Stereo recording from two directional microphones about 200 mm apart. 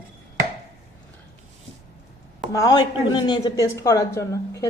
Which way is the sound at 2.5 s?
20° left (ahead or behind).